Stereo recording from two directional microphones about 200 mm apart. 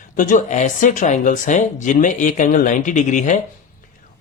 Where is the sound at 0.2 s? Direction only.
40° left (ahead or behind).